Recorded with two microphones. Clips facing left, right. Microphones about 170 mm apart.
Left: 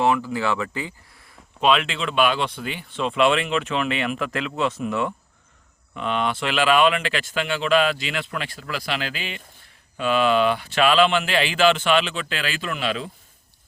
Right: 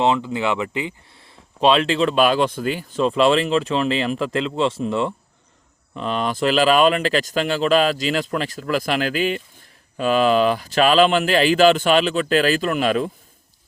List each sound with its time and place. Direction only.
0.0 s speech: 20° right (ahead or behind); by 13.1 s 45° right (ahead or behind)